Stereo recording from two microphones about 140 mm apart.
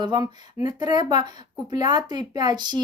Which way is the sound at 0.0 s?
30° right (ahead or behind).